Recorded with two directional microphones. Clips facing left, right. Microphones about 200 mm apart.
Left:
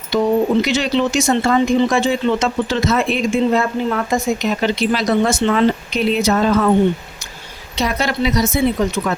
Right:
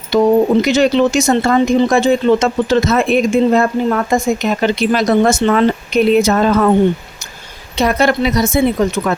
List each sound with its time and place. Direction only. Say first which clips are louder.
0.1 s speech: right 4 dB; 45° right (ahead or behind)
7.8 s speech: right 6 dB; 55° right (ahead or behind)